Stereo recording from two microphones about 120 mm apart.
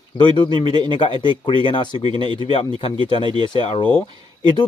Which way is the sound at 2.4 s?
45° left (ahead or behind).